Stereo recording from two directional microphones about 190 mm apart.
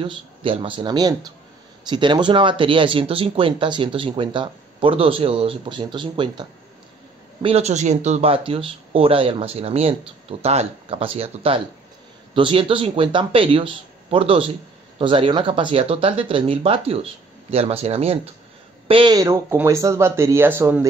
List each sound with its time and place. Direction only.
0.0 s speech: 30° right (ahead or behind)
7.4 s speech: 35° right (ahead or behind); by 20.8 s 10° right (ahead or behind)